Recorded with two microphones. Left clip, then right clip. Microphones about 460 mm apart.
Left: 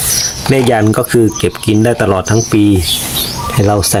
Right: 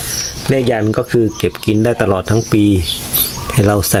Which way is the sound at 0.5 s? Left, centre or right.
Right.